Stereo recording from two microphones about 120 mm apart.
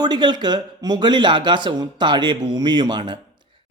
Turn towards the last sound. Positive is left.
turn(degrees=-40)  # may be behind; listen again after turning